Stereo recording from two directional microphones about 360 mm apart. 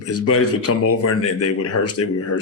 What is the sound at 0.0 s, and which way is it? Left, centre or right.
Speech, left.